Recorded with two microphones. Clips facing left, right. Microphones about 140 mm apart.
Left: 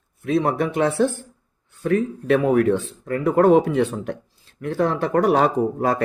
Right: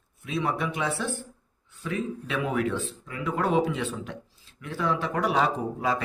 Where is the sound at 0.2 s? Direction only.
55° left (ahead or behind).